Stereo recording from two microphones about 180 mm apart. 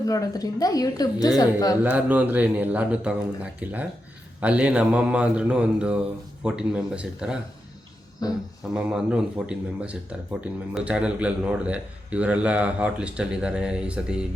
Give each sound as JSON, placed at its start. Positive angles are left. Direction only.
{"t": 0.0, "sound": "a woman's voice", "side_deg": 20}
{"t": 1.8, "sound": "a man's voice", "side_deg": -10}
{"t": 8.6, "sound": "speech", "side_deg": -5}